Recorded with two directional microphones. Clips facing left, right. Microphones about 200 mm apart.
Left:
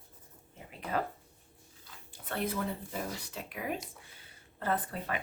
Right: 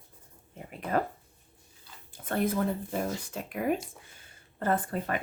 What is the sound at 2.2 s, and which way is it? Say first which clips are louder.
Speech: right 6 dB; 45° right (ahead or behind).